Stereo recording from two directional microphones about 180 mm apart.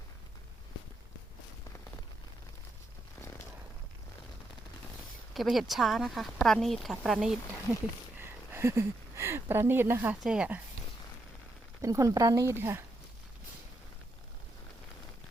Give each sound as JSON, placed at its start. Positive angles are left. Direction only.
{"t": 3.2, "sound": "a sound", "side_deg": 15}
{"t": 5.3, "sound": "speech", "side_deg": 0}
{"t": 8.2, "sound": "speech", "side_deg": -15}
{"t": 11.8, "sound": "speech", "side_deg": -20}